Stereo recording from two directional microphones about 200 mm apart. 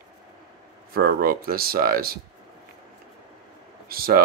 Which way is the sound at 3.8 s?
50° right (ahead or behind).